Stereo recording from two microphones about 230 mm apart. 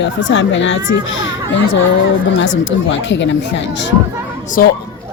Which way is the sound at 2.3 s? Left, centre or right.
Left.